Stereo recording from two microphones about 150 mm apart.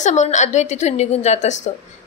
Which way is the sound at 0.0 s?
50° left (ahead or behind).